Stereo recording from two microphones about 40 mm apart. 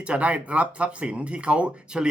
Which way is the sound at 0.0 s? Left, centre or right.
Right.